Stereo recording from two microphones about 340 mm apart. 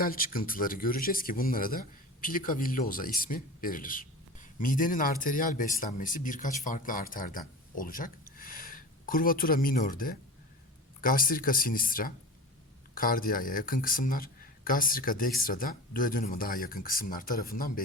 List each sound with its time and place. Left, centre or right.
0.0 s speech: left